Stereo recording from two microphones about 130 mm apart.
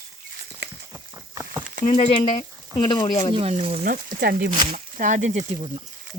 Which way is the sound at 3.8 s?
90° right.